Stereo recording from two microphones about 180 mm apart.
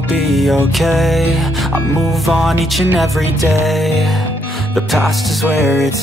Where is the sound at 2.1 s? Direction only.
Centre (ahead or behind).